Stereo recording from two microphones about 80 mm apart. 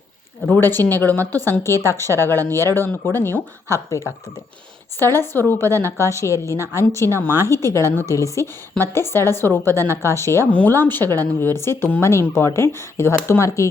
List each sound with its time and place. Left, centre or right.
0.5 s a woman's voice: left
3.8 s a woman's voice: left
4.9 s a woman's voice: left
10.5 s a woman's voice: left